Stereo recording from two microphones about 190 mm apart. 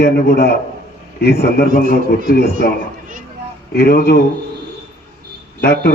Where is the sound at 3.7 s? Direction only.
55° left (ahead or behind).